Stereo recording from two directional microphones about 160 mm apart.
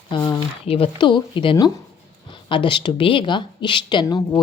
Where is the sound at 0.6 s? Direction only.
35° left (ahead or behind).